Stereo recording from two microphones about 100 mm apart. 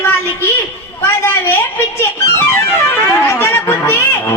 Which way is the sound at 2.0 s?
25° left (ahead or behind).